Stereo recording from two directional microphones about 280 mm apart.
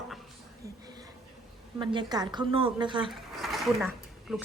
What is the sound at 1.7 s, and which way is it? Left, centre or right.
A woman's voice, centre.